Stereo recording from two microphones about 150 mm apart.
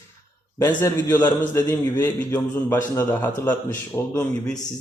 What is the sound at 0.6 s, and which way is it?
A man's voice, 20° left (ahead or behind).